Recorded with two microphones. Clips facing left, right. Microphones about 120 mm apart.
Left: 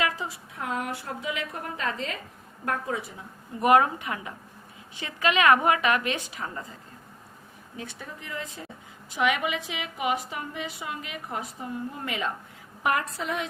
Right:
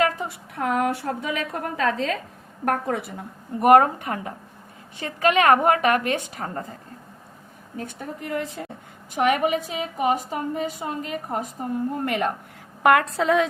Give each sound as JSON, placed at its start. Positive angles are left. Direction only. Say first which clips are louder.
{"t": 0.0, "sound": "a woman's voice", "louder": "right 6 dB", "side_deg": -55}
{"t": 2.6, "sound": "a woman's voice", "louder": "right 6 dB", "side_deg": -55}
{"t": 7.8, "sound": "a woman's voice", "louder": "right 7 dB", "side_deg": -50}
{"t": 9.1, "sound": "a woman's voice", "louder": "right 5 dB", "side_deg": -45}
{"t": 12.8, "sound": "a woman's voice", "louder": "right 9 dB", "side_deg": -80}